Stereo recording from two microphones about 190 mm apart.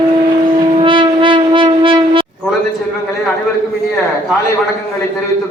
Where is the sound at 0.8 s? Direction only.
25° right (ahead or behind).